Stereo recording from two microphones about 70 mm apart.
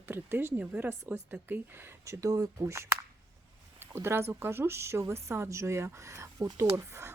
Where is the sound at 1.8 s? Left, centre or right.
Right.